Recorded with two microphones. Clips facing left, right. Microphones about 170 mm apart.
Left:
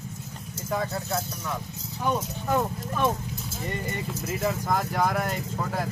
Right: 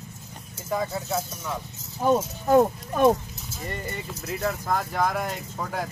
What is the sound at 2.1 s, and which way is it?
Speech, 40° right (ahead or behind).